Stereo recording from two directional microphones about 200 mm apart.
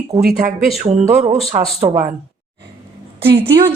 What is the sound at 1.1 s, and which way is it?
Speech, 30° right (ahead or behind).